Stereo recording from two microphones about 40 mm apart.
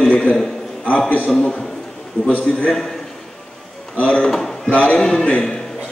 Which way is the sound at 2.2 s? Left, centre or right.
Left.